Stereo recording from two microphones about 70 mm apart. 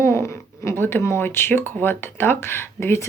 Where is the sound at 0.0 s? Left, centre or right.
Left.